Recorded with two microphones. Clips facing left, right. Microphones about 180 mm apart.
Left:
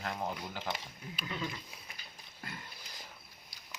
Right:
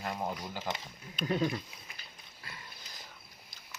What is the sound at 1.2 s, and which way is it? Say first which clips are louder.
Speech: right 9 dB; 50° right (ahead or behind).